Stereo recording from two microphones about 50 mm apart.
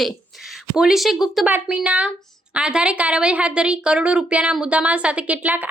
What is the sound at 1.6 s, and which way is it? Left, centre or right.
A woman's voice, right.